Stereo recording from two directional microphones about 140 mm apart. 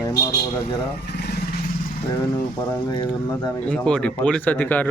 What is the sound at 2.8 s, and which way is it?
Speech, 30° left (ahead or behind).